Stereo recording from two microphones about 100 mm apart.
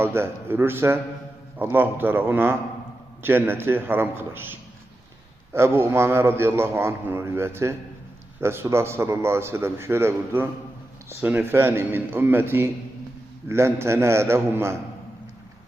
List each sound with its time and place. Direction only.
0.0 s a man's voice: 25° right (ahead or behind)
5.5 s a man's voice: 25° right (ahead or behind)